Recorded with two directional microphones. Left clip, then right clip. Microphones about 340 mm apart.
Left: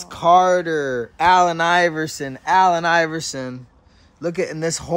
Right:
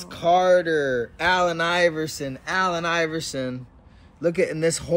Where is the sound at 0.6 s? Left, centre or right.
Left.